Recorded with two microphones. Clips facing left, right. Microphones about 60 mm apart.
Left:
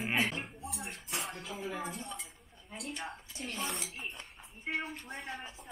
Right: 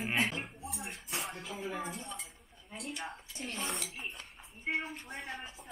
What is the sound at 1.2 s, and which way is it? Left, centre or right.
Dishes, centre.